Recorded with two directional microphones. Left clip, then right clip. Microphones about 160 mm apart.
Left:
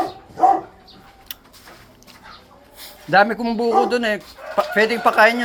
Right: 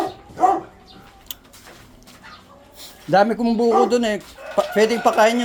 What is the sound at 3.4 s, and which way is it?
Speech, 30° right (ahead or behind).